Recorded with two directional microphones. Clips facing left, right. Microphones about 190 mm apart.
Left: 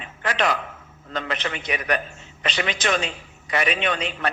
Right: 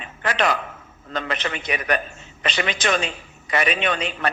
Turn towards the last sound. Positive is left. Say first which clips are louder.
# right 1 dB
turn(degrees=-50)  # may be behind; listen again after turning